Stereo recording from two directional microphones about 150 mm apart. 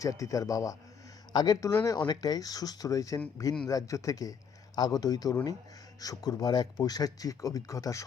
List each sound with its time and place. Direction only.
0.0 s speech: 20° left (ahead or behind)